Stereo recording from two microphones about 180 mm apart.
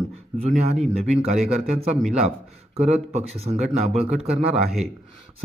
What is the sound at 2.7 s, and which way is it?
Speech, 35° right (ahead or behind).